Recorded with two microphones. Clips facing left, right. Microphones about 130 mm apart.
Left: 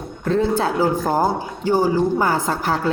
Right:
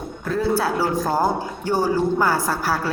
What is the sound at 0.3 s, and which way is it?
A woman's voice, 25° left (ahead or behind).